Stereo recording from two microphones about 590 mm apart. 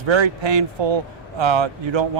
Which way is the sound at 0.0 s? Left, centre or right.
Right.